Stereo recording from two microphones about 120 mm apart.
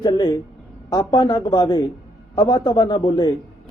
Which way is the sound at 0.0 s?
35° left (ahead or behind).